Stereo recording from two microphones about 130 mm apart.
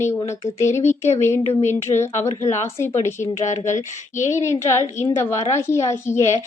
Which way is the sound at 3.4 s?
65° left (ahead or behind).